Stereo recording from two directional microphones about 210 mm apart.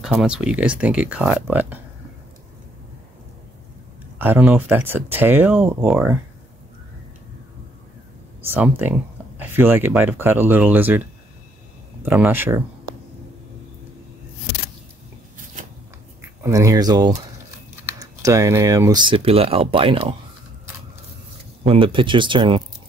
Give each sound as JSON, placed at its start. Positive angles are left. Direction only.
{"t": 0.0, "sound": "speech", "side_deg": -5}
{"t": 4.2, "sound": "speech", "side_deg": -10}
{"t": 8.5, "sound": "speech", "side_deg": -5}
{"t": 16.2, "sound": "speech", "side_deg": -15}
{"t": 21.6, "sound": "speech", "side_deg": -25}